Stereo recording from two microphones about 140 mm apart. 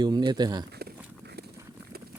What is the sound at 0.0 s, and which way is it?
Speech, 30° right (ahead or behind).